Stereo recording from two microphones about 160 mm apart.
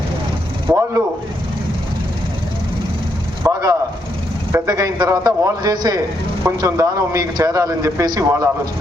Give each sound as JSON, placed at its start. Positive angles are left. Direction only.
{"t": 0.7, "sound": "vehicle", "side_deg": -15}
{"t": 3.4, "sound": "a sound", "side_deg": -20}
{"t": 4.5, "sound": "a man's voice", "side_deg": -20}